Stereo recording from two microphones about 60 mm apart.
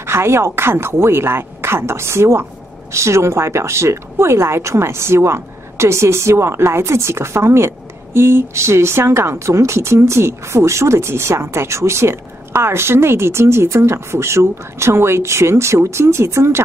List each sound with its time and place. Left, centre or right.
0.0 s speech: right